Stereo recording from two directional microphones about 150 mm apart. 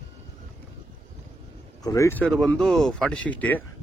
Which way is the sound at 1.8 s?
25° left (ahead or behind).